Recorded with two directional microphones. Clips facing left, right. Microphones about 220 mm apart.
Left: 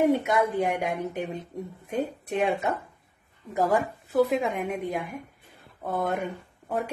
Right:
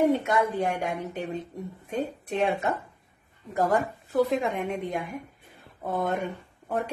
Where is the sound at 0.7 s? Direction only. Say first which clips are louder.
Left 1 dB; 15° left (ahead or behind).